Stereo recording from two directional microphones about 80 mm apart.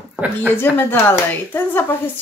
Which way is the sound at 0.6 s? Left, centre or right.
Left.